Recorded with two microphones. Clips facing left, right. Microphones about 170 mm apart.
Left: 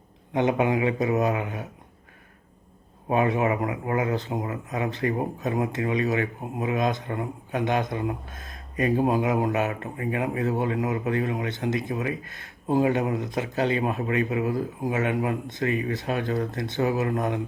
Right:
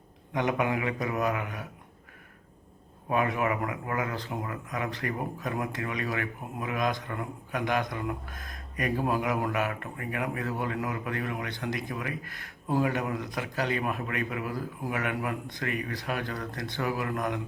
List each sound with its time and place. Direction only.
0.3 s speech: 25° left (ahead or behind)
3.1 s speech: 25° left (ahead or behind)